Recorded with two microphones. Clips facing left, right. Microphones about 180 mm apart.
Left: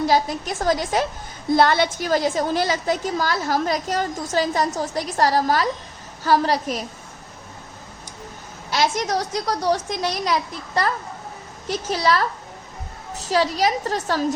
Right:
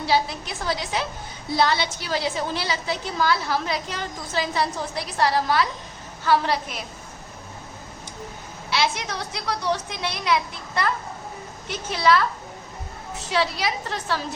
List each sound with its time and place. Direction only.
0.0 s a woman's voice: 45° left (ahead or behind)
8.7 s a woman's voice: 45° left (ahead or behind)